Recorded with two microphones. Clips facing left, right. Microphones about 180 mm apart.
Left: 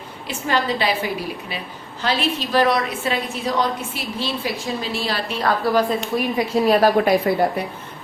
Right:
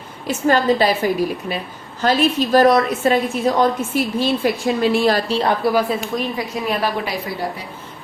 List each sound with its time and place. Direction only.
0.3 s a woman's voice: 45° right (ahead or behind)
5.3 s a woman's voice: 25° right (ahead or behind)
5.6 s speech: 10° right (ahead or behind)
6.7 s a woman's voice: 45° left (ahead or behind)